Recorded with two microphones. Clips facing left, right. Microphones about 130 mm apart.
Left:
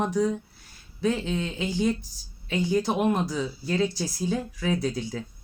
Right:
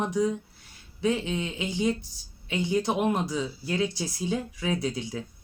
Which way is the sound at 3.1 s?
20° right (ahead or behind).